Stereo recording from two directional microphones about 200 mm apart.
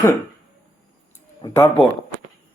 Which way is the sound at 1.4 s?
10° left (ahead or behind).